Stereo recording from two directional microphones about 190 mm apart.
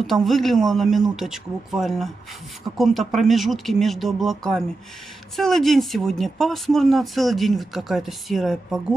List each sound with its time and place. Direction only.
0.0 s speech: centre (ahead or behind)